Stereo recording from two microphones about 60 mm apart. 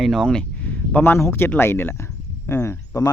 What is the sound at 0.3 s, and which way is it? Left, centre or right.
Speech, centre.